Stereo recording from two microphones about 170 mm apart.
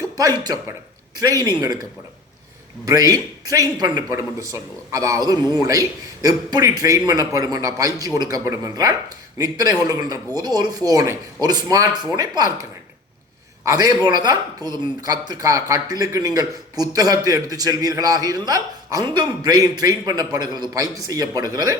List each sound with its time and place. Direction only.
0.2 s speech: 20° right (ahead or behind)
13.7 s speech: 20° right (ahead or behind)